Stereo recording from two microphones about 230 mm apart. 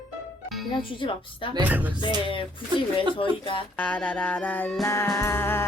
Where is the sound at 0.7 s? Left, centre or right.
Left.